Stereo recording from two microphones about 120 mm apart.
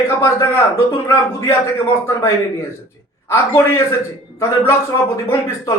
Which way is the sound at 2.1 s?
25° left (ahead or behind).